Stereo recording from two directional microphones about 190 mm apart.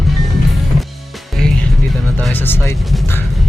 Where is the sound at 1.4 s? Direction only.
5° left (ahead or behind).